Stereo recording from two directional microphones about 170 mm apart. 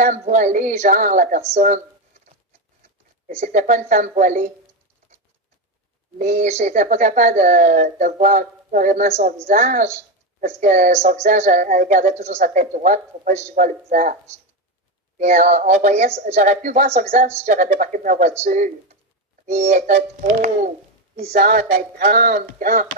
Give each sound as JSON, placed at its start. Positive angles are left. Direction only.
{"t": 0.0, "sound": "speech", "side_deg": -45}
{"t": 3.3, "sound": "speech", "side_deg": -45}
{"t": 6.1, "sound": "speech", "side_deg": -45}
{"t": 15.1, "sound": "speech", "side_deg": -45}
{"t": 21.3, "sound": "speech", "side_deg": -60}